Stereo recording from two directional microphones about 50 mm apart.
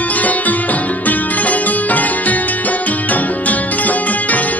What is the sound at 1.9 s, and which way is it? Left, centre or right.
Music, left.